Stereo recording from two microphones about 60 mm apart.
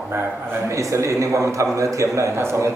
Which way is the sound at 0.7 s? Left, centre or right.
Right.